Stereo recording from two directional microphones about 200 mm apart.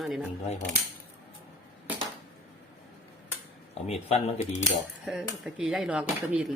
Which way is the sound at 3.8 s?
30° left (ahead or behind).